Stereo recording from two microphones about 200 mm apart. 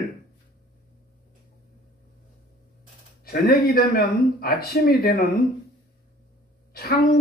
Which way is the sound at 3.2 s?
45° left (ahead or behind).